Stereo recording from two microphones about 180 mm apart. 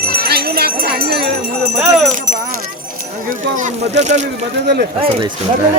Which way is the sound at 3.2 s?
45° right (ahead or behind).